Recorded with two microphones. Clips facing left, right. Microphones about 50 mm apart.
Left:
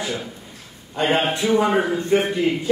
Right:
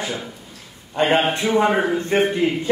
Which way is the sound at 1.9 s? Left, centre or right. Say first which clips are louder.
Even; right.